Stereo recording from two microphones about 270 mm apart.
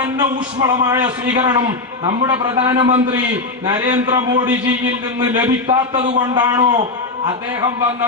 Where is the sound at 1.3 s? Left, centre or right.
Centre.